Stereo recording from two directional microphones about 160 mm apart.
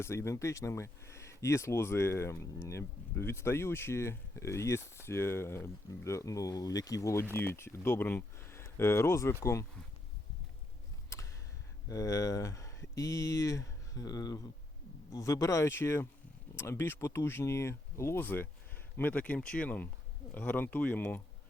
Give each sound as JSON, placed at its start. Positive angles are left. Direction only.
{"t": 0.0, "sound": "speech", "side_deg": 15}
{"t": 11.9, "sound": "speech", "side_deg": 20}